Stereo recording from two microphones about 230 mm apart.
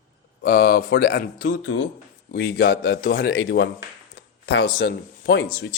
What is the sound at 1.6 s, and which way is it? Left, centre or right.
Speech, left.